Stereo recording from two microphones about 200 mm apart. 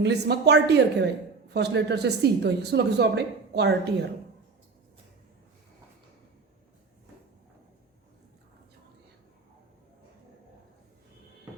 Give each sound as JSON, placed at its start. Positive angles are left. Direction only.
{"t": 0.0, "sound": "speech", "side_deg": -55}